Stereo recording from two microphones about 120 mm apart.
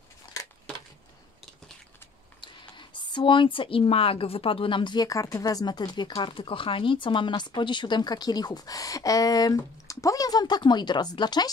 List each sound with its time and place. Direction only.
2.4 s speech: 40° left (ahead or behind)